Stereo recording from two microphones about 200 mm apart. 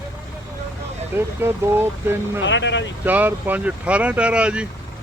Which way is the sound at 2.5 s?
65° left (ahead or behind).